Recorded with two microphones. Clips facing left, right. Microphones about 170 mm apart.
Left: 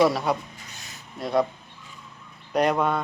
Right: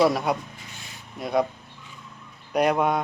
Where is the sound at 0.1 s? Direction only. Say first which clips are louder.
Even; 10° right (ahead or behind).